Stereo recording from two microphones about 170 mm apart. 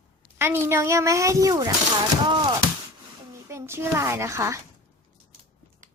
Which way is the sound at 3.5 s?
15° right (ahead or behind).